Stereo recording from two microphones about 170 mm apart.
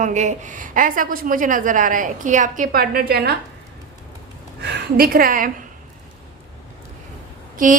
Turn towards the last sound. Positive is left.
turn(degrees=-50)  # may be behind; listen again after turning